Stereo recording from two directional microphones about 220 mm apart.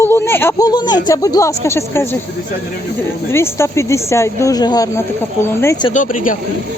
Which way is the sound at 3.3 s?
10° left (ahead or behind).